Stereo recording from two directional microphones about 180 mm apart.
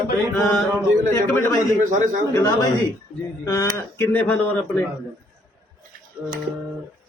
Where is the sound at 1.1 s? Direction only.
15° left (ahead or behind).